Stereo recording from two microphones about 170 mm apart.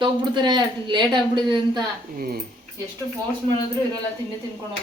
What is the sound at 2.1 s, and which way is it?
Speech, 60° right (ahead or behind).